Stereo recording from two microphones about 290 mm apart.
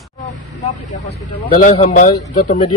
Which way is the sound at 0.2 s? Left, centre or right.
Left.